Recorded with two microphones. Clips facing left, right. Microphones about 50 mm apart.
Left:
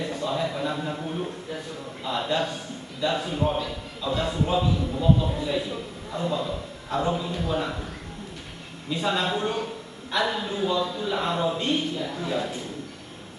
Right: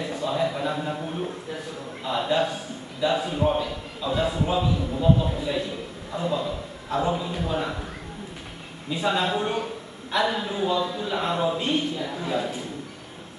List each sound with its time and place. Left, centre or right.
0.0 s a man's voice: centre
8.8 s a man's voice: centre